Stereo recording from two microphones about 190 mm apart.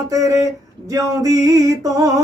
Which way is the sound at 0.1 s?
15° right (ahead or behind).